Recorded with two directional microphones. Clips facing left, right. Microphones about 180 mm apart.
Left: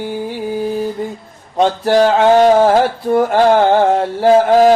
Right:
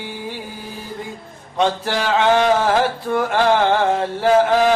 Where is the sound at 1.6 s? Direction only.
40° left (ahead or behind).